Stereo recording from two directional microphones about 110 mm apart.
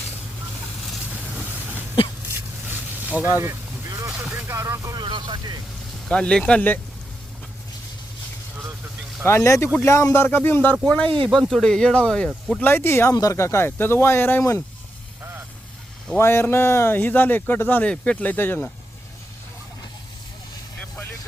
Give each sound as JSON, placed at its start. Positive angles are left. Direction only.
{"t": 1.1, "sound": "vehicle", "side_deg": -15}
{"t": 2.2, "sound": "a sound", "side_deg": -20}
{"t": 4.1, "sound": "vehicle", "side_deg": -10}
{"t": 4.5, "sound": "vehicle", "side_deg": -25}
{"t": 4.9, "sound": "vehicle", "side_deg": -45}
{"t": 6.1, "sound": "speech", "side_deg": 5}
{"t": 9.2, "sound": "speech", "side_deg": 25}
{"t": 11.0, "sound": "speech", "side_deg": -55}
{"t": 11.3, "sound": "speech", "side_deg": 0}
{"t": 12.6, "sound": "speech", "side_deg": 20}
{"t": 16.1, "sound": "speech", "side_deg": 20}